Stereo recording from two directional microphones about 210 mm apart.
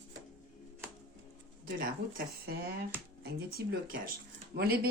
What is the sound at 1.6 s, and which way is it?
A woman's voice, 45° right (ahead or behind).